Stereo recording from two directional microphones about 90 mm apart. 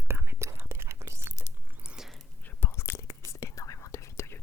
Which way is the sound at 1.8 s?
5° right (ahead or behind).